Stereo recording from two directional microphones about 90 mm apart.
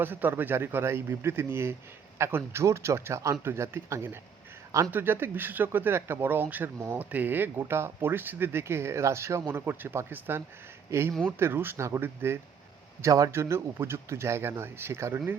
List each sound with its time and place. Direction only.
0.0 s a man's voice: 20° right (ahead or behind)
13.0 s speech: 40° right (ahead or behind)